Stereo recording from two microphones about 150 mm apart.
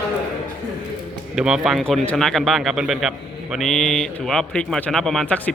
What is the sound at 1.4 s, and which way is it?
A man's voice, 5° right (ahead or behind).